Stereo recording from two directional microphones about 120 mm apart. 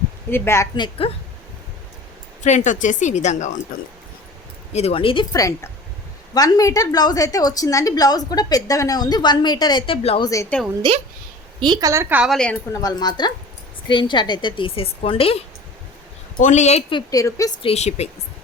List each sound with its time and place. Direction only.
0.3 s a woman's voice: 20° left (ahead or behind)
0.8 s speech: 50° left (ahead or behind)
2.4 s a woman's voice: 90° left
4.7 s speech: 60° left (ahead or behind)
5.3 s a woman's voice: 25° left (ahead or behind); by 10.2 s 55° left (ahead or behind)
10.2 s a woman's voice: 30° left (ahead or behind)
10.8 s a woman's voice: 40° right (ahead or behind)
12.0 s a woman's voice: 10° right (ahead or behind)
12.3 s a woman's voice: 10° left (ahead or behind)
12.7 s a woman's voice: 35° left (ahead or behind); by 15.4 s 50° left (ahead or behind)
16.4 s speech: 75° left (ahead or behind)
17.1 s a woman's voice: 25° left (ahead or behind)
17.6 s a woman's voice: 60° left (ahead or behind)